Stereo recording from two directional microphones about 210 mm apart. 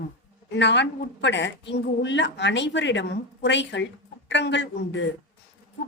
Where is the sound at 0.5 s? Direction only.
55° left (ahead or behind).